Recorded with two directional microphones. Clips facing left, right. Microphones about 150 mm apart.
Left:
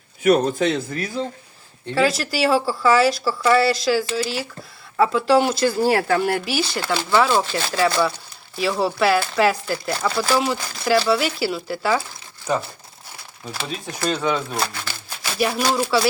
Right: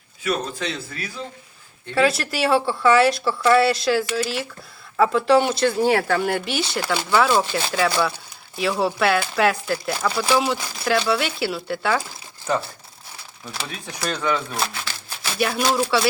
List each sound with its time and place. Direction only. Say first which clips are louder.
0.6 s a man's voice: left 8 dB; 45° left (ahead or behind)
2.0 s speech: even; centre (ahead or behind)
14.5 s speech: left 1 dB; centre (ahead or behind)